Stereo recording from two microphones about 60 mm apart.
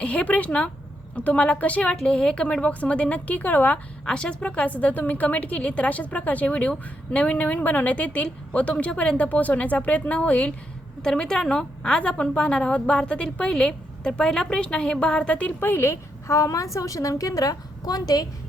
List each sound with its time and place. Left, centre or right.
0.0 s a woman's voice: left
4.1 s a woman's voice: centre
11.0 s a woman's voice: centre
15.6 s a woman's voice: left